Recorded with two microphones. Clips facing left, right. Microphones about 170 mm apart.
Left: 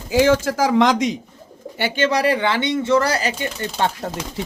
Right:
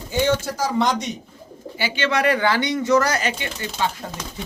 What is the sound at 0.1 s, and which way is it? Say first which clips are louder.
Speech: left 5 dB; 90° left.